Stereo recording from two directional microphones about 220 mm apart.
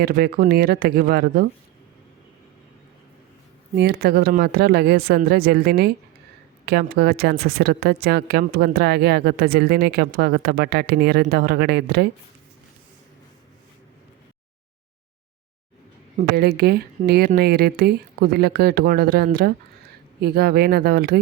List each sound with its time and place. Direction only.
0.0 s a woman's voice: 45° right (ahead or behind)
3.8 s a woman's voice: 45° right (ahead or behind)
16.1 s a woman's voice: 45° right (ahead or behind)